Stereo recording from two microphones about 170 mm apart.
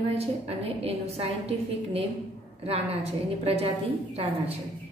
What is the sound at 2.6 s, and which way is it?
A woman's voice, 35° right (ahead or behind).